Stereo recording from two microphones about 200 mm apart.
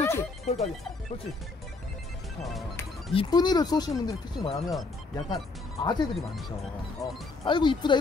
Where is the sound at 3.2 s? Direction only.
20° left (ahead or behind).